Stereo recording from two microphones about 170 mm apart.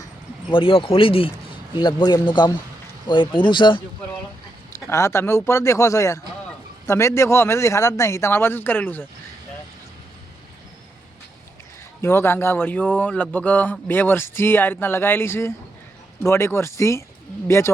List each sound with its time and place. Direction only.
0.5 s speech: 30° left (ahead or behind)
4.7 s speech: 15° left (ahead or behind)
12.0 s speech: 15° left (ahead or behind)